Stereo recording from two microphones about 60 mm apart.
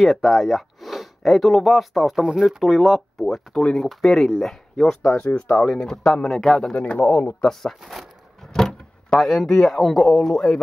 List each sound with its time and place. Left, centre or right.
0.0 s speech: centre
6.7 s a man's voice: left
7.8 s speech: centre